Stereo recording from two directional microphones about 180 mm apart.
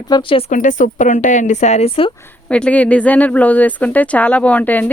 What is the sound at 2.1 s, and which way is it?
Speech, 10° left (ahead or behind).